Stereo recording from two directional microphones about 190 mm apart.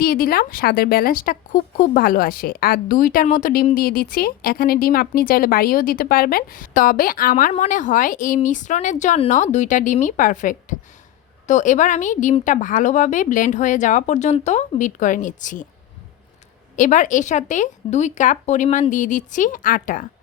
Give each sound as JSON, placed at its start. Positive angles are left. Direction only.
{"t": 0.0, "sound": "a woman's voice", "side_deg": 50}
{"t": 16.7, "sound": "a woman's voice", "side_deg": 40}